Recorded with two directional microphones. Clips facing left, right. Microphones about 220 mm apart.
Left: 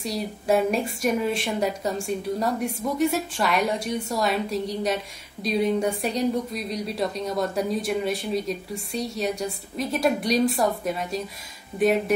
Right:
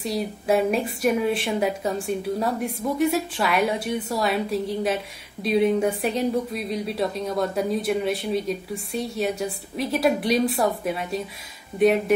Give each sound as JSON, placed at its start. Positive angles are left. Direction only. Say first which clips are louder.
{"t": 0.0, "sound": "a woman's voice", "louder": "right 2 dB", "side_deg": 0}